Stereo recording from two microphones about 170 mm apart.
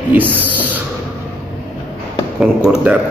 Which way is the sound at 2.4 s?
5° right (ahead or behind).